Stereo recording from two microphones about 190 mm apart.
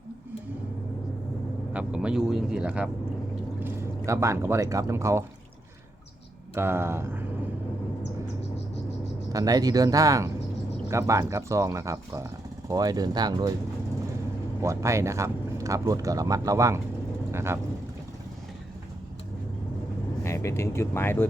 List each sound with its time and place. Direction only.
1.7 s speech: 5° right (ahead or behind)
6.5 s speech: 15° right (ahead or behind)
9.3 s speech: 20° right (ahead or behind)
14.6 s speech: 15° right (ahead or behind)
20.2 s speech: 15° left (ahead or behind)